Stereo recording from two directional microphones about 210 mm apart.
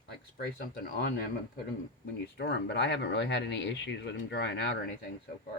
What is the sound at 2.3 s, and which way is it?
Speech, 55° left (ahead or behind).